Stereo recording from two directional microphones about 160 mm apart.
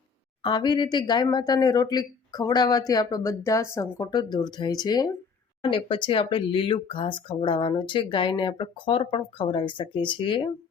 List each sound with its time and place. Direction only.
0.4 s speech: 30° left (ahead or behind)